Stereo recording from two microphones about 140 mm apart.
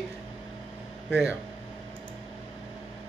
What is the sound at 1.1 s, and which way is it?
Speech, 5° right (ahead or behind).